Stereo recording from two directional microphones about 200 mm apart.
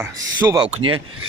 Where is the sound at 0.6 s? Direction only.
25° right (ahead or behind).